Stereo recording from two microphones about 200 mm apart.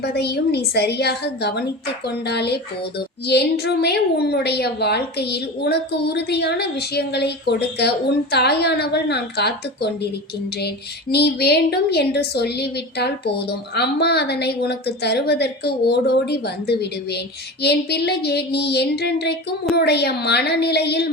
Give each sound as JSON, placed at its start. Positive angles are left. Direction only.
{"t": 0.0, "sound": "a woman's voice", "side_deg": 55}
{"t": 11.1, "sound": "a woman's voice", "side_deg": 55}